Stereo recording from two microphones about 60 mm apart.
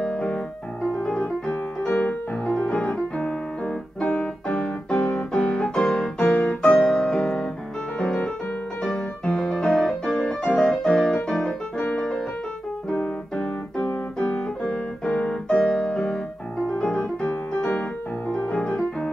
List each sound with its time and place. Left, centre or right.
0.0 s piano: centre
1.9 s piano: left
4.0 s keyboard: left
4.6 s piano: centre
6.1 s music: left
6.6 s music: centre
8.0 s piano: centre
9.4 s music: centre
10.7 s piano: centre
11.2 s music: centre
12.9 s music: centre
15.4 s piano: centre